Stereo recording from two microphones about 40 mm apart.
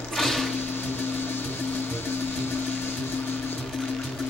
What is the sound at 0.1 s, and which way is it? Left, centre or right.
Sewing machine, centre.